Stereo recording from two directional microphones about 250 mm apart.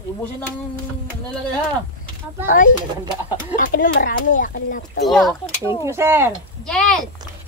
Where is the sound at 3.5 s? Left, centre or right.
Left.